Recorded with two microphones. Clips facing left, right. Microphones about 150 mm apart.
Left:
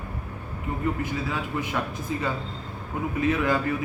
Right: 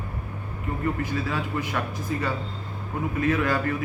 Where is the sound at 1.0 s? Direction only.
15° left (ahead or behind).